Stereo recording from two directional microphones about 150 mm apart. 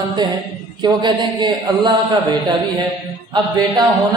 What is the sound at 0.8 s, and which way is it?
A man's voice, 25° right (ahead or behind).